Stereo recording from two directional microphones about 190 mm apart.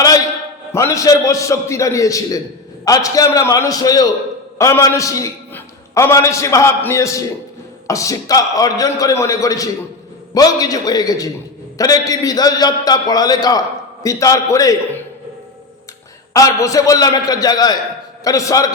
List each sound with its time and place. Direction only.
0.0 s a sound: 20° left (ahead or behind)
0.7 s a man's voice: 15° left (ahead or behind)
16.3 s a man's voice: 15° left (ahead or behind)